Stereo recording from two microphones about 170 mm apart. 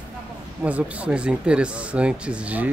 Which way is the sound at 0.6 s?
10° right (ahead or behind).